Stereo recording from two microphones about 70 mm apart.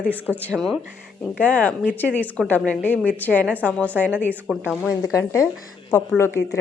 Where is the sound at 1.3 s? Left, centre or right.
Left.